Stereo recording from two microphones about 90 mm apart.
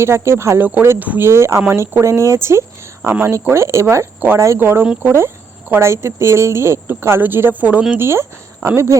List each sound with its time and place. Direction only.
0.0 s speech: 30° right (ahead or behind)
1.3 s speech: 30° right (ahead or behind)
8.0 s speech: 30° right (ahead or behind)